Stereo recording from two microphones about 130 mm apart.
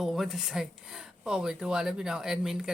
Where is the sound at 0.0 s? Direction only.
Centre (ahead or behind).